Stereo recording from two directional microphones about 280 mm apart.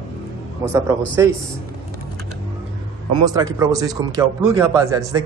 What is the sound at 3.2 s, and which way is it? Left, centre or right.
Speech, centre.